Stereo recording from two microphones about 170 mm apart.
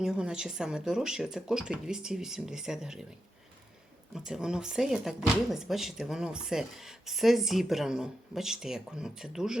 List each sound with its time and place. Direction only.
0.0 s speech: 5° right (ahead or behind)
4.1 s speech: 5° right (ahead or behind)